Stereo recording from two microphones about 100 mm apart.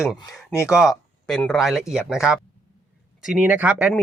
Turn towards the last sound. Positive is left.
turn(degrees=-15)  # may be behind; listen again after turning